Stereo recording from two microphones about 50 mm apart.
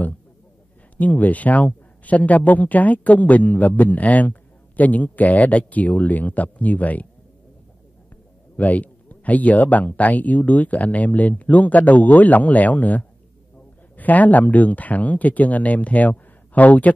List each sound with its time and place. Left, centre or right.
0.9 s speech: left
8.5 s speech: left